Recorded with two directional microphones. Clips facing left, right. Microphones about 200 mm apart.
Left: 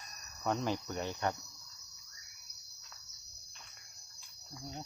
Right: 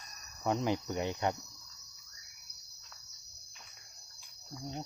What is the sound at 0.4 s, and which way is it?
Cricket, 15° right (ahead or behind).